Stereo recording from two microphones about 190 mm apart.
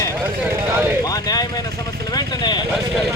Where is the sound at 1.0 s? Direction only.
20° left (ahead or behind).